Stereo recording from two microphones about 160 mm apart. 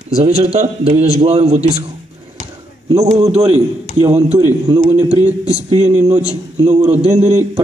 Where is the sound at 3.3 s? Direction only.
40° right (ahead or behind).